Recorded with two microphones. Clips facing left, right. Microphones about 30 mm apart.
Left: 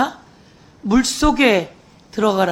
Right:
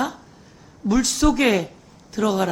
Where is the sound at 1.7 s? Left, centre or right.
Centre.